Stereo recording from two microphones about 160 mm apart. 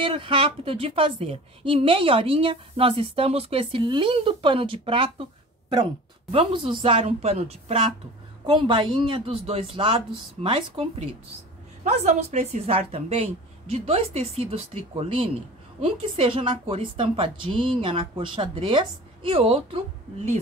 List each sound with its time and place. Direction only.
0.0 s a woman's voice: 30° right (ahead or behind)
6.3 s a woman's voice: 35° right (ahead or behind)
11.8 s a woman's voice: 45° right (ahead or behind)